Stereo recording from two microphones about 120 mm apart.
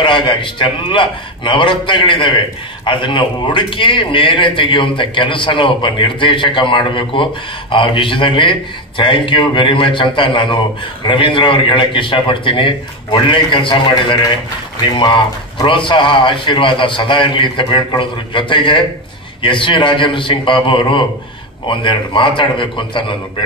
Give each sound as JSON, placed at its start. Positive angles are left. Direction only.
{"t": 0.0, "sound": "a man's voice", "side_deg": 45}